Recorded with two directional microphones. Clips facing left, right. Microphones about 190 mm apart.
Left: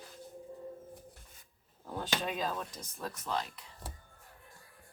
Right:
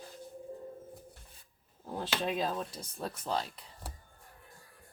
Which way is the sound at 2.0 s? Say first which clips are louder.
Right 2 dB; 30° right (ahead or behind).